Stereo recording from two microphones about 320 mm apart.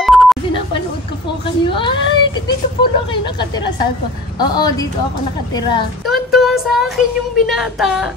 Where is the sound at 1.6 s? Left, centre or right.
Centre.